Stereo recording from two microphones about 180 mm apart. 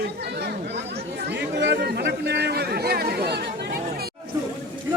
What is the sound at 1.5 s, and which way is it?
Chatter, 70° right (ahead or behind).